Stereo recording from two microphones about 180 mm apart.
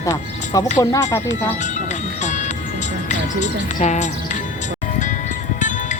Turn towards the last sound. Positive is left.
turn(degrees=40)  # may be behind; listen again after turning